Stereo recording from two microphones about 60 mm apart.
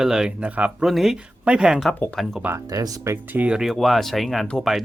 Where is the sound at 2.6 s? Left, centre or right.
Right.